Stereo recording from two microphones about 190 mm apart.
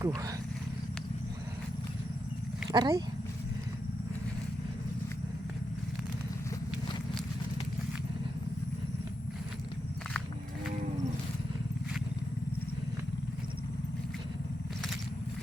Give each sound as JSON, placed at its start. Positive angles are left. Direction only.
{"t": 0.0, "sound": "speech", "side_deg": -15}
{"t": 2.6, "sound": "speech", "side_deg": -20}